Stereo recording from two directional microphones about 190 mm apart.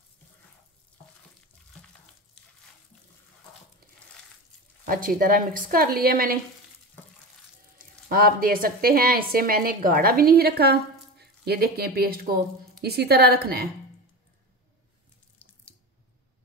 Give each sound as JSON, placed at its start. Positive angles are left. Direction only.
{"t": 4.8, "sound": "a woman's voice", "side_deg": -45}
{"t": 8.1, "sound": "a woman's voice", "side_deg": -50}
{"t": 15.4, "sound": "water tap", "side_deg": 10}